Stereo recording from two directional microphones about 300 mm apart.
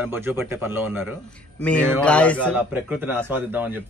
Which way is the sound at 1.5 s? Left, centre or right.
Centre.